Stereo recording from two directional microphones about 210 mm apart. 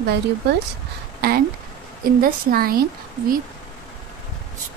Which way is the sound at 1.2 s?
50° right (ahead or behind).